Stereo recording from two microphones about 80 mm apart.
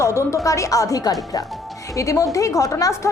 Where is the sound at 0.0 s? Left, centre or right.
Left.